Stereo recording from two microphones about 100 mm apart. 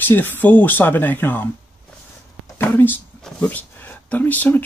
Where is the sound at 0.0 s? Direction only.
20° left (ahead or behind).